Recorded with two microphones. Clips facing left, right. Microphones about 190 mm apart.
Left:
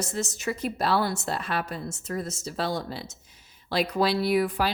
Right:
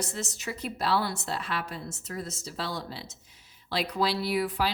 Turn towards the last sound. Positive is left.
turn(degrees=50)  # may be behind; listen again after turning